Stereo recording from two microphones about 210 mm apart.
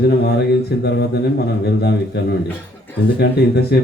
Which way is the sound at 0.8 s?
50° left (ahead or behind).